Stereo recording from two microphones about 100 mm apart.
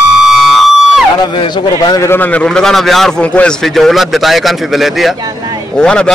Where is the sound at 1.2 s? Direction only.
55° left (ahead or behind).